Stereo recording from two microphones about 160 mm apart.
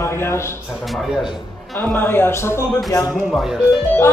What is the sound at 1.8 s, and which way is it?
Speech, 10° left (ahead or behind).